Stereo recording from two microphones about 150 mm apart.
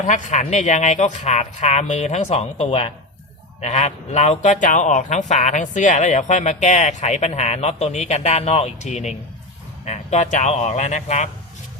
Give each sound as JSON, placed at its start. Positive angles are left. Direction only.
{"t": 0.0, "sound": "speech", "side_deg": 55}